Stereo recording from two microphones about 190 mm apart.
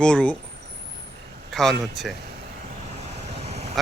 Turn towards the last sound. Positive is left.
turn(degrees=-35)  # may be behind; listen again after turning